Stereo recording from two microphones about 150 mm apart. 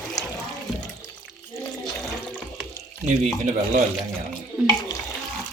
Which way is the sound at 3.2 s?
50° right (ahead or behind).